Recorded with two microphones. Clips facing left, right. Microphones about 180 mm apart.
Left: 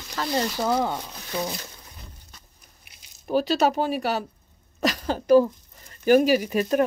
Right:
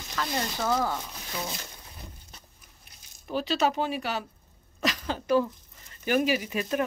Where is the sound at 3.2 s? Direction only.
45° left (ahead or behind).